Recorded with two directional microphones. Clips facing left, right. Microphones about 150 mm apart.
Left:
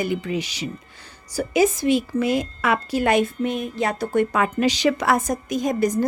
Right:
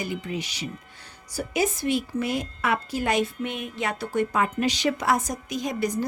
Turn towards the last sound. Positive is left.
turn(degrees=45)  # may be behind; listen again after turning